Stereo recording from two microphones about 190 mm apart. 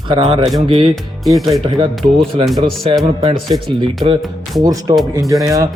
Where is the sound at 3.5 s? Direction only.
30° right (ahead or behind).